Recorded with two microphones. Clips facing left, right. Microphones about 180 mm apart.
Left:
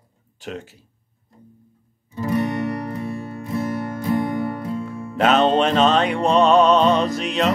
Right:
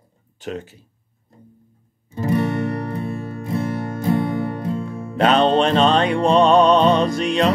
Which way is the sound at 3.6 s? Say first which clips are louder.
Even; 25° right (ahead or behind).